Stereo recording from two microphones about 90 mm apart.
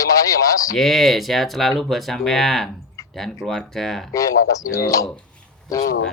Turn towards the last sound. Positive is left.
turn(degrees=40)  # may be behind; listen again after turning